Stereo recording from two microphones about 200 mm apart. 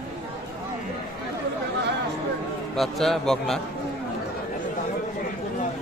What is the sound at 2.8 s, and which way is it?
Speech, centre (ahead or behind).